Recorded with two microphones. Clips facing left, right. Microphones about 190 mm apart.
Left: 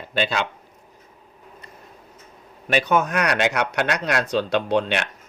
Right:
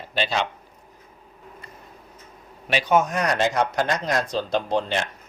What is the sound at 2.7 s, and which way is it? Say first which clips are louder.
Speech: even; 60° left (ahead or behind).